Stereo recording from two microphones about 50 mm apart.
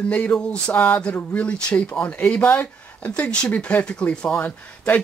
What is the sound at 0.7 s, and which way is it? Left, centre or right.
Speech, left.